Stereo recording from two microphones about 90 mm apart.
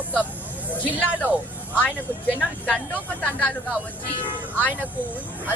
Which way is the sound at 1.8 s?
20° left (ahead or behind).